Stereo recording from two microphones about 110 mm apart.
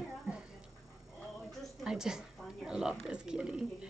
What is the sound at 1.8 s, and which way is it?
A woman's voice, 5° right (ahead or behind).